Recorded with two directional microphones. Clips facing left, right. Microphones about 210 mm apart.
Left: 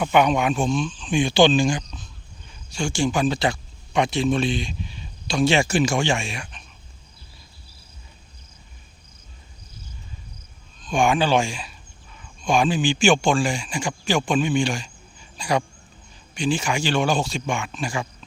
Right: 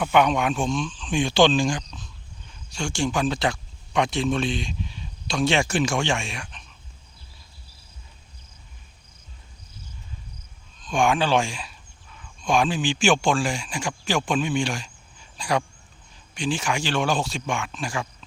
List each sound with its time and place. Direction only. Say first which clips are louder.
0.0 s speech: left 1 dB; 5° left (ahead or behind)
10.8 s speech: left 2 dB; centre (ahead or behind)